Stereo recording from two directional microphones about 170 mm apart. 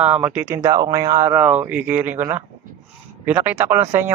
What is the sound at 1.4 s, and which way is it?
Speech, 10° right (ahead or behind).